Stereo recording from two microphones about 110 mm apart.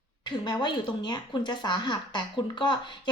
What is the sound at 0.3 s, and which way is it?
Speech, 40° left (ahead or behind).